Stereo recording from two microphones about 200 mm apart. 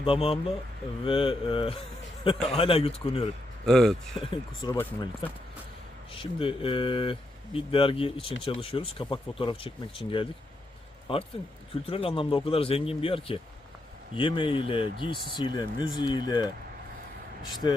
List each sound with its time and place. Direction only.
0.0 s speech: 25° left (ahead or behind)
3.7 s speech: centre (ahead or behind)
4.2 s speech: 25° left (ahead or behind)
4.8 s speech: 10° left (ahead or behind)
6.1 s speech: 25° left (ahead or behind)